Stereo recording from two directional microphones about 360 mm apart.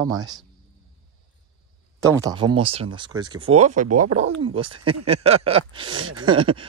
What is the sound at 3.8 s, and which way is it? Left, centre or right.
Speech, right.